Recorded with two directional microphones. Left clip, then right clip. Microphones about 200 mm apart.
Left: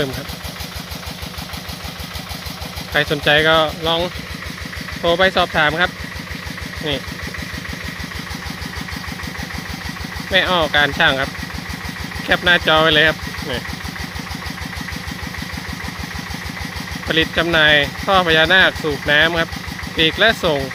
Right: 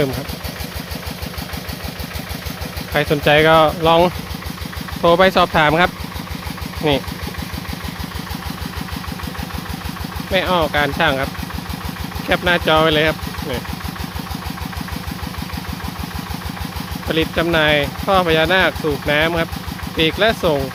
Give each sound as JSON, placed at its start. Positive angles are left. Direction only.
{"t": 2.9, "sound": "speech", "side_deg": -5}
{"t": 10.3, "sound": "speech", "side_deg": 0}
{"t": 12.3, "sound": "speech", "side_deg": 0}
{"t": 17.1, "sound": "speech", "side_deg": 0}